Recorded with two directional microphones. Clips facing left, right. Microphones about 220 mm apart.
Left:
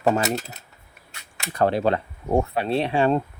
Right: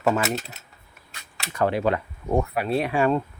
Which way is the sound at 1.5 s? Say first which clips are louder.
Left 2 dB; 35° left (ahead or behind).